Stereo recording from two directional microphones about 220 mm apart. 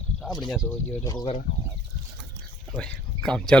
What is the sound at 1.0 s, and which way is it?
Speech, 20° left (ahead or behind).